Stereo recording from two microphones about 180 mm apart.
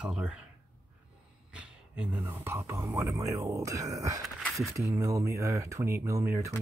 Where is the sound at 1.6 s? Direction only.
5° right (ahead or behind).